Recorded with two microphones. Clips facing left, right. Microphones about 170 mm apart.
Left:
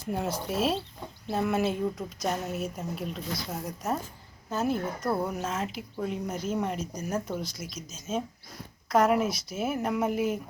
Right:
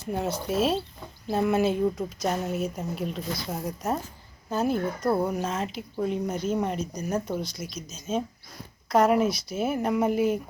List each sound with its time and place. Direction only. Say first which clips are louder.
0.1 s a woman's voice: right 3 dB; centre (ahead or behind)
5.5 s a woman's voice: right 2 dB; 5° left (ahead or behind)